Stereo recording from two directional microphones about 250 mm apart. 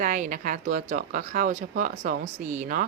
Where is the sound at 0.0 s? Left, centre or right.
Right.